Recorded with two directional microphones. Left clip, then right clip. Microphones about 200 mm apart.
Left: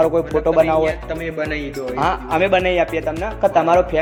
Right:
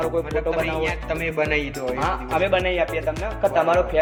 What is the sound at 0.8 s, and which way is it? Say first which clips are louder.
Speech: left 3 dB; 30° right (ahead or behind).